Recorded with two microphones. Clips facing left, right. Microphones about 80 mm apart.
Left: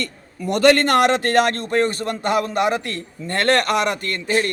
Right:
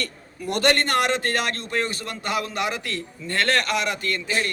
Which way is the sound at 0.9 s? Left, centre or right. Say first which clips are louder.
Left 6 dB; left.